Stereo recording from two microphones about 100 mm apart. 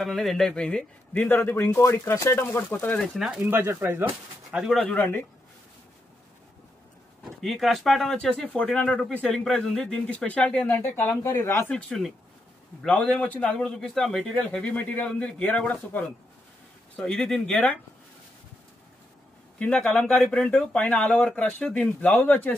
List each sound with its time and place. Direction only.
0.0 s speech: 5° left (ahead or behind)
3.0 s speech: 5° right (ahead or behind)
3.4 s speech: 20° right (ahead or behind)
4.6 s speech: 5° right (ahead or behind)
4.8 s speech: 15° left (ahead or behind)
7.4 s speech: centre (ahead or behind); by 11.6 s 30° left (ahead or behind)
11.7 s speech: 5° left (ahead or behind)
19.6 s speech: 10° left (ahead or behind)